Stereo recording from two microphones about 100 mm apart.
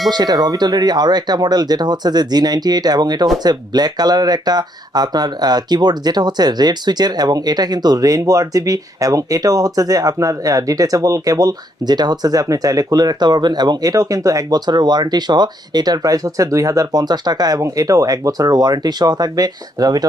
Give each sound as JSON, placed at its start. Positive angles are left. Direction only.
{"t": 0.1, "sound": "speech", "side_deg": -45}